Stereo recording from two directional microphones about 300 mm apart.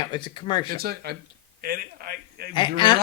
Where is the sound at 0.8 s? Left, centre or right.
Right.